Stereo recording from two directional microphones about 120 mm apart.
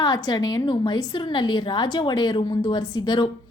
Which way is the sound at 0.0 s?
35° left (ahead or behind).